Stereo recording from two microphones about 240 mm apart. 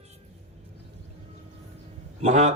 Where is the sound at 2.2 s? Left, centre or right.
Right.